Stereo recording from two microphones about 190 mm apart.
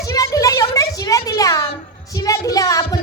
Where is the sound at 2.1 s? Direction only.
15° left (ahead or behind).